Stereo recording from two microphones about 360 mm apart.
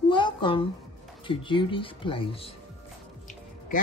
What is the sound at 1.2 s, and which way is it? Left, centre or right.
Speech, centre.